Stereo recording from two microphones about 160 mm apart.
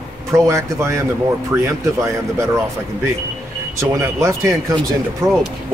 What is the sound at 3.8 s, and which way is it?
A man's voice, 20° right (ahead or behind).